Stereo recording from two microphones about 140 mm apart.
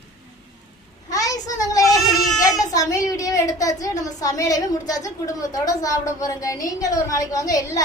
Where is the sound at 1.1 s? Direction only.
25° left (ahead or behind).